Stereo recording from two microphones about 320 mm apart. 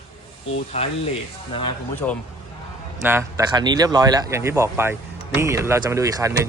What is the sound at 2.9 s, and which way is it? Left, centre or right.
A man's voice, centre.